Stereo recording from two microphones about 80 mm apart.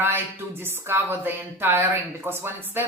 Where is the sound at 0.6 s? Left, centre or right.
Right.